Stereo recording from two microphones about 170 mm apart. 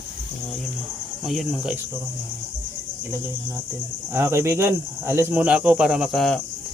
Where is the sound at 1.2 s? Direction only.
Centre (ahead or behind).